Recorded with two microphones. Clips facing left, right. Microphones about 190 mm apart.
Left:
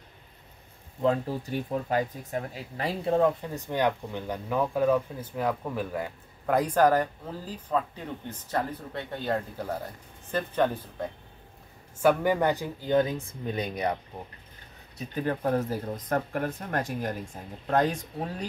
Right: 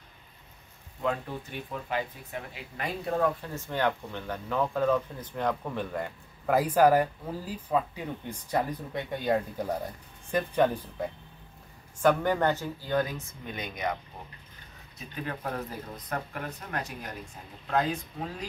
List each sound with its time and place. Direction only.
1.0 s speech: 35° left (ahead or behind); by 11.1 s 10° right (ahead or behind)
12.0 s speech: 10° left (ahead or behind); by 13.9 s 35° left (ahead or behind)
15.0 s speech: 40° left (ahead or behind)
18.1 s speech: 35° left (ahead or behind)